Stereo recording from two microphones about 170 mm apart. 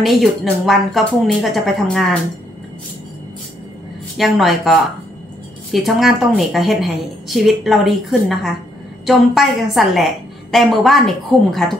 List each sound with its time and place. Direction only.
0.0 s a woman's voice: centre (ahead or behind)
4.2 s a woman's voice: centre (ahead or behind)